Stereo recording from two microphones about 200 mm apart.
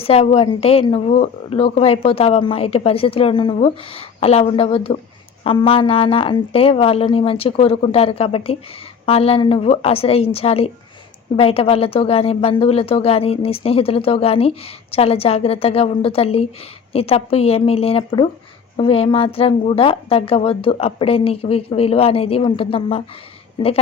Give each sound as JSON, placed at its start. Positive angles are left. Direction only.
{"t": 0.0, "sound": "speech", "side_deg": 30}